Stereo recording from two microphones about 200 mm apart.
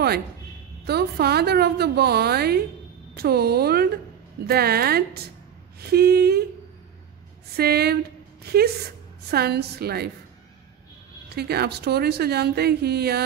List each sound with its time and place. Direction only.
0.8 s a woman's voice: 55° right (ahead or behind)
7.5 s a woman's voice: 50° right (ahead or behind)
9.3 s a woman's voice: 55° right (ahead or behind)
11.2 s a woman's voice: 55° right (ahead or behind)